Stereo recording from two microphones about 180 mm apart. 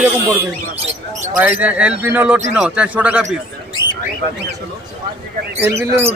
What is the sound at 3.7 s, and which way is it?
Bird, 25° left (ahead or behind).